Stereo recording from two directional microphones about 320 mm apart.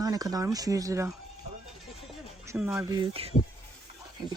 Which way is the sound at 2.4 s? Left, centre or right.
Centre.